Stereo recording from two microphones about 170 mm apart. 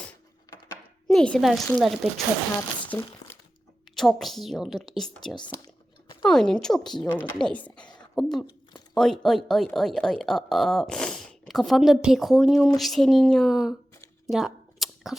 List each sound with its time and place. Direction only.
1.0 s speech: 5° left (ahead or behind)
2.8 s crumpling: 10° left (ahead or behind)
3.9 s speech: centre (ahead or behind)
5.6 s a sound: 25° left (ahead or behind)
6.2 s speech: 5° left (ahead or behind)
14.3 s a sound: centre (ahead or behind)